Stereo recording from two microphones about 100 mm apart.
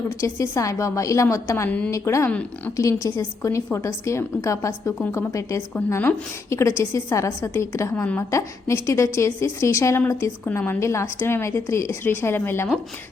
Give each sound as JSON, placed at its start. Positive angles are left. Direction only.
{"t": 0.2, "sound": "a woman's voice", "side_deg": 30}
{"t": 7.9, "sound": "a woman's voice", "side_deg": 15}
{"t": 8.3, "sound": "a woman's voice", "side_deg": 30}